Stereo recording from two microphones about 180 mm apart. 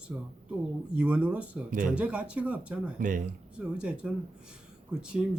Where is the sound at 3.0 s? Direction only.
45° right (ahead or behind).